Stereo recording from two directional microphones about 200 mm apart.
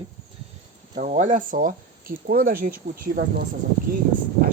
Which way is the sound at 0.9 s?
35° right (ahead or behind).